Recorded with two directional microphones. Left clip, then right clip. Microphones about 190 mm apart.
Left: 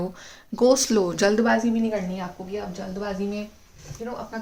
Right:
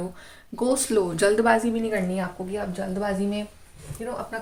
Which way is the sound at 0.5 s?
30° left (ahead or behind).